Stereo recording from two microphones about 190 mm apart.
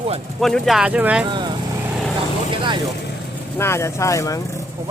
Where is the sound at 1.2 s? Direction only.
25° right (ahead or behind).